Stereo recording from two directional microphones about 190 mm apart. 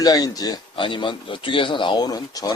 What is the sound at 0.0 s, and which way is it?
Speech, 20° left (ahead or behind).